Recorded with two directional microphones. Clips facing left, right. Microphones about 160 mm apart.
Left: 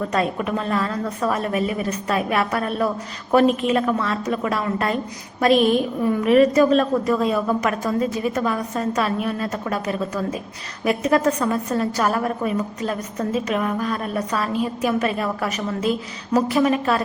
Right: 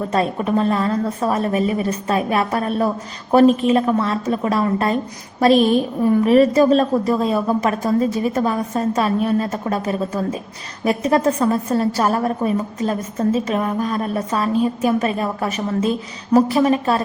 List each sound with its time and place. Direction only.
0.1 s a woman's voice: 30° right (ahead or behind)
6.2 s a woman's voice: 30° right (ahead or behind)